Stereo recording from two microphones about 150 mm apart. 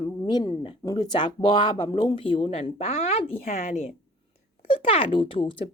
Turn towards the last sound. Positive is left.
turn(degrees=35)  # may be behind; listen again after turning